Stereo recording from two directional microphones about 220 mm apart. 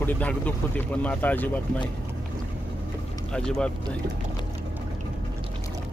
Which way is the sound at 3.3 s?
5° left (ahead or behind).